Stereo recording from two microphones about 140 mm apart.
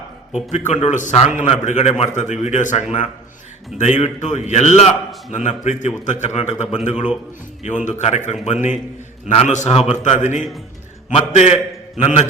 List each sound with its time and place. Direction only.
0.3 s a man's voice: 60° left (ahead or behind)